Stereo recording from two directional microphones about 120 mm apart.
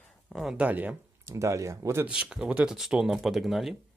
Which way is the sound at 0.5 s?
10° right (ahead or behind).